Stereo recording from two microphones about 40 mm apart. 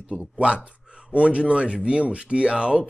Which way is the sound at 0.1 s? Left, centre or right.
Right.